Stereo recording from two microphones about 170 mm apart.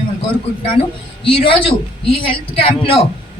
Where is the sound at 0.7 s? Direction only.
35° left (ahead or behind).